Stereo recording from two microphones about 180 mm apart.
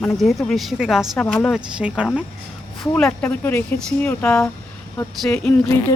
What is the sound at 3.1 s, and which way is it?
Speech, 10° left (ahead or behind).